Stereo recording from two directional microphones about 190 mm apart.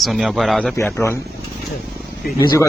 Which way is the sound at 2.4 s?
15° left (ahead or behind).